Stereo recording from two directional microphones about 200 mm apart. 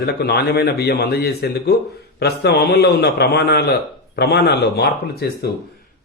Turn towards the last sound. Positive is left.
turn(degrees=55)  # may be behind; listen again after turning